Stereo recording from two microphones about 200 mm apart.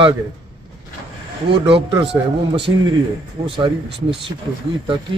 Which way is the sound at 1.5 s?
25° right (ahead or behind).